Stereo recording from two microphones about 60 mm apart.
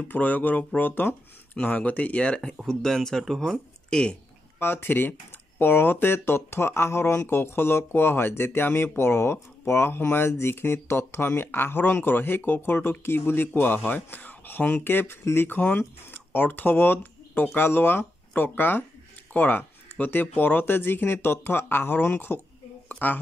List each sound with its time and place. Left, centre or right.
0.1 s speech: left; by 3.5 s centre
3.9 s speech: centre
4.6 s speech: left
22.8 s a sound: left